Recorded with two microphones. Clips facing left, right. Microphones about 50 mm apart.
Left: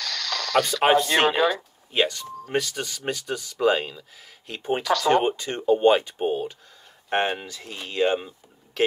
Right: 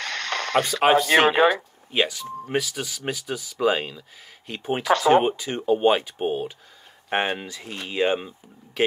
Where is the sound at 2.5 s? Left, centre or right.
Centre.